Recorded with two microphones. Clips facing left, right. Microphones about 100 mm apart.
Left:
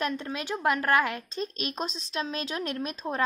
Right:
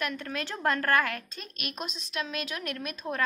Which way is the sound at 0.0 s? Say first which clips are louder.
Left 2 dB; 20° left (ahead or behind).